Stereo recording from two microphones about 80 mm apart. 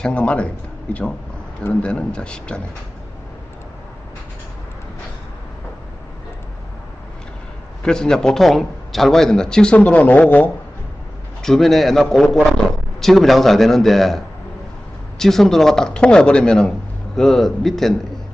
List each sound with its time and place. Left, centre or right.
0.0 s a man's voice: centre
7.8 s a man's voice: centre
11.4 s a man's voice: centre